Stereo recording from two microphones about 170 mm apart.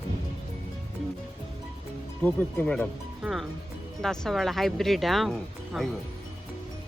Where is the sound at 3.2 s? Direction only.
Centre (ahead or behind).